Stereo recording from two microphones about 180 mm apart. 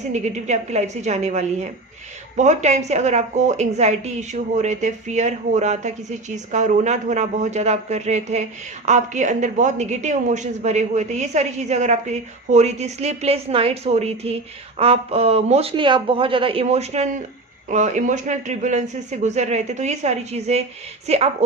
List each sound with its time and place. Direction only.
0.1 s a woman's voice: 40° right (ahead or behind)